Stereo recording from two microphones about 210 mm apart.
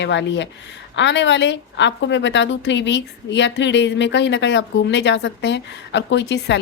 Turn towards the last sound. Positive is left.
turn(degrees=55)  # may be behind; listen again after turning